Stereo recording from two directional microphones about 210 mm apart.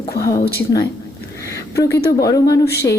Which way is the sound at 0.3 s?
45° left (ahead or behind).